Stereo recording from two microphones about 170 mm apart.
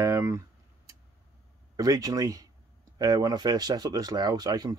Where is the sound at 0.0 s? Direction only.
20° right (ahead or behind).